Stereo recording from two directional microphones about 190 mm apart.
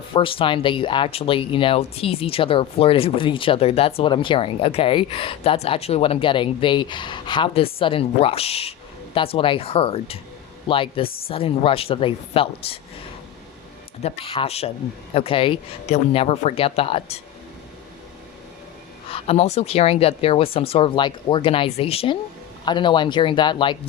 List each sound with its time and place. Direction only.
0.1 s speech: 25° left (ahead or behind)
14.0 s speech: 30° left (ahead or behind)
19.1 s speech: 30° left (ahead or behind)